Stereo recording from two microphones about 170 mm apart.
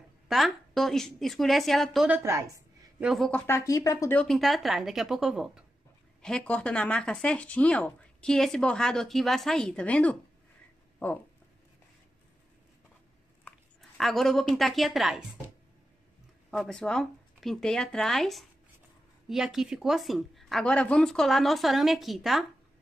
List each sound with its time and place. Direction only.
0.3 s speech: centre (ahead or behind)
2.0 s speech: 15° right (ahead or behind)
3.0 s speech: centre (ahead or behind); by 4.2 s 20° left (ahead or behind)
4.2 s speech: centre (ahead or behind)
13.4 s a woman's voice: 5° left (ahead or behind)